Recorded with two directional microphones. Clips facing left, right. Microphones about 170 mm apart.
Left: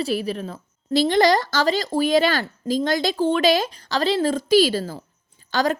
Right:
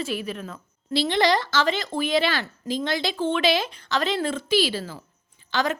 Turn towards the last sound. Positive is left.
turn(degrees=40)  # may be behind; listen again after turning